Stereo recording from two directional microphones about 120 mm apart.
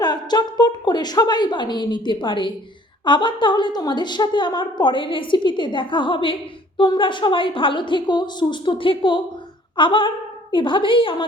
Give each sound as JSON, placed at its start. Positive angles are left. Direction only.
{"t": 0.0, "sound": "a woman's voice", "side_deg": 35}